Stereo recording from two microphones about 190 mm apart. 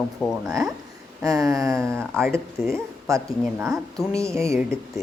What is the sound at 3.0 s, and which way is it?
Speech, 15° right (ahead or behind).